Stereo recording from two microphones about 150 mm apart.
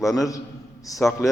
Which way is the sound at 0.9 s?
20° left (ahead or behind).